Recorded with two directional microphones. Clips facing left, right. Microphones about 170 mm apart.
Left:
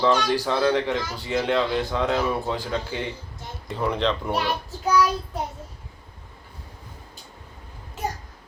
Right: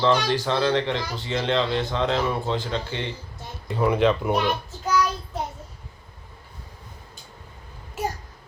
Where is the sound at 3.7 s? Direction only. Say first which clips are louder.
Right 4 dB; 5° right (ahead or behind).